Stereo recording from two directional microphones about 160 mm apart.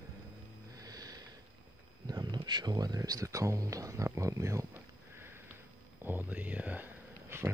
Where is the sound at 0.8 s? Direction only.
25° right (ahead or behind).